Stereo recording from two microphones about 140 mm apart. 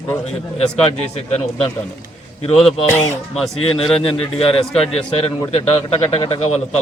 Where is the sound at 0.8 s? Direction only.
50° left (ahead or behind).